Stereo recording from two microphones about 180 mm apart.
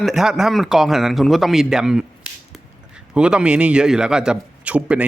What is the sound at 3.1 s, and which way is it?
Speech, 5° right (ahead or behind).